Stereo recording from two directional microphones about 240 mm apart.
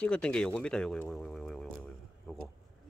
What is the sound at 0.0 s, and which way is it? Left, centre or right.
Speech, centre.